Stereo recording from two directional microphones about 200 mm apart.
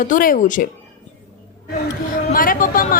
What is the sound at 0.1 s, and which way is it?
Speech, 45° left (ahead or behind).